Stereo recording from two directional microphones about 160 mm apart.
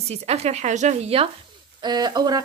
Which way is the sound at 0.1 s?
40° right (ahead or behind).